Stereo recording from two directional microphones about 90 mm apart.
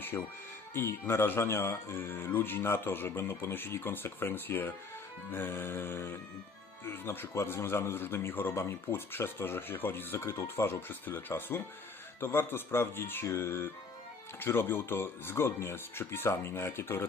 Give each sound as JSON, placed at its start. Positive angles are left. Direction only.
{"t": 0.1, "sound": "a man's voice", "side_deg": 25}